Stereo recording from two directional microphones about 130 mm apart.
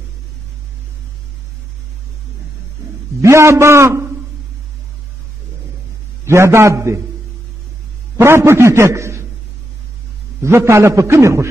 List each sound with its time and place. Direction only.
3.2 s a man's voice: 20° right (ahead or behind)
6.2 s a man's voice: 20° right (ahead or behind)
8.2 s a man's voice: 20° right (ahead or behind)
10.4 s a man's voice: 20° right (ahead or behind)